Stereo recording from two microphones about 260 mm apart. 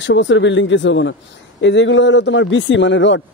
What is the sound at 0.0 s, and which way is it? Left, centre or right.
Speech, left.